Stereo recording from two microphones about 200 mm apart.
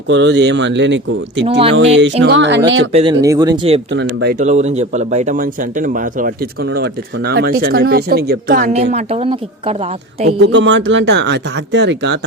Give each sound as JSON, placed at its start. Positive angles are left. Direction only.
{"t": 0.1, "sound": "speech", "side_deg": -65}
{"t": 1.5, "sound": "speech", "side_deg": -30}
{"t": 1.7, "sound": "speech", "side_deg": -65}
{"t": 2.6, "sound": "speech", "side_deg": -75}
{"t": 2.9, "sound": "speech", "side_deg": -25}
{"t": 3.2, "sound": "speech", "side_deg": -15}
{"t": 3.9, "sound": "speech", "side_deg": -60}
{"t": 4.4, "sound": "a man's voice", "side_deg": -35}
{"t": 6.7, "sound": "speech", "side_deg": -55}
{"t": 10.2, "sound": "speech", "side_deg": -65}